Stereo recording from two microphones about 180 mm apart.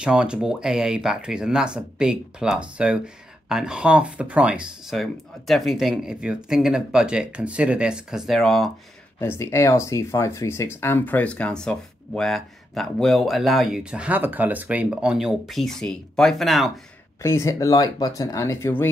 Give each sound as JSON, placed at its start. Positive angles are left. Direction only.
{"t": 0.0, "sound": "speech", "side_deg": -5}
{"t": 9.2, "sound": "speech", "side_deg": 15}
{"t": 17.2, "sound": "speech", "side_deg": 15}